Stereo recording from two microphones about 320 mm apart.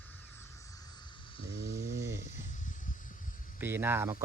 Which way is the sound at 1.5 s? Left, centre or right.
Centre.